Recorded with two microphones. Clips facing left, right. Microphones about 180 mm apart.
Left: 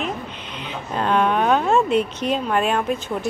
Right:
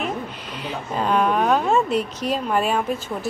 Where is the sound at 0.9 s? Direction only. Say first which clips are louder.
Left 1 dB; 5° right (ahead or behind).